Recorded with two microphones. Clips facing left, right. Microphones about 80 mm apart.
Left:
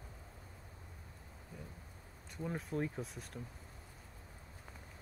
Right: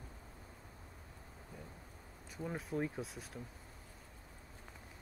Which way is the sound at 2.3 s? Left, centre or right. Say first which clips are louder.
Even; centre.